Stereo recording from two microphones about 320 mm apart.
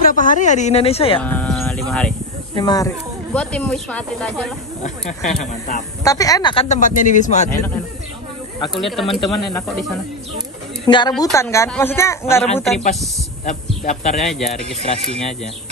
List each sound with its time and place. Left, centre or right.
0.0 s speech: left
1.2 s sheep: centre
2.5 s speech: centre
5.4 s speech: left
6.0 s speech: centre
7.4 s speech: centre
8.7 s speech: centre
10.9 s speech: centre
13.8 s speech: left